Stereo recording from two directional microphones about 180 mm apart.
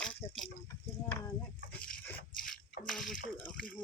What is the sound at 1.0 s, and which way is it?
Clip-clop, 15° left (ahead or behind).